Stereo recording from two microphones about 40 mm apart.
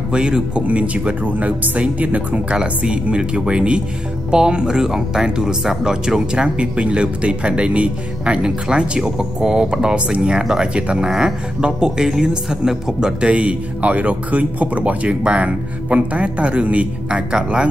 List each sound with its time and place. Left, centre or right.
0.1 s speech: right
0.7 s speech: right
2.8 s speech: right
10.4 s a man's voice: centre
10.7 s speech: right
11.1 s a man's voice: centre
13.2 s speech: right